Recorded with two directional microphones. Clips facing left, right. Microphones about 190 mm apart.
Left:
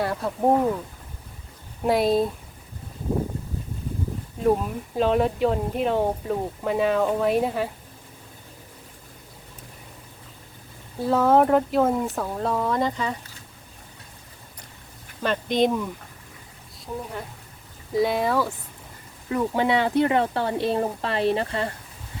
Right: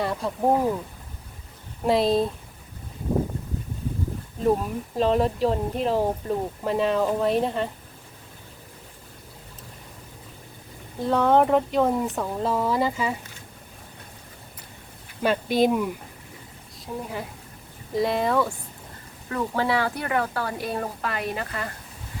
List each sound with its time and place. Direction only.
0.0 s speech: centre (ahead or behind)
1.8 s speech: centre (ahead or behind)
4.9 s speech: centre (ahead or behind)
11.0 s speech: 5° left (ahead or behind)
15.2 s speech: 10° right (ahead or behind)
19.3 s speech: 20° left (ahead or behind)